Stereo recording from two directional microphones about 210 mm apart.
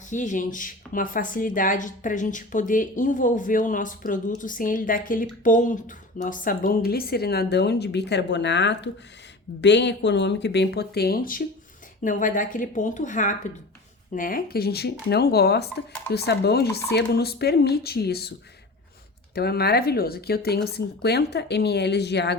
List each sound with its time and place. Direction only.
0.1 s speech: 35° left (ahead or behind)
19.3 s speech: 50° left (ahead or behind)